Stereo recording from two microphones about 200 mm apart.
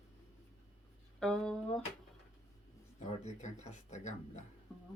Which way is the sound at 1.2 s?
5° left (ahead or behind).